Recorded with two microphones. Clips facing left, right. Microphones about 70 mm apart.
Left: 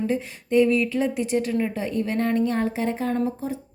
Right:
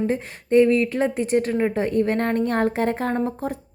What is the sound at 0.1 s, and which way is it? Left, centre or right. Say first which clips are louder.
A woman's voice: right 3 dB; right.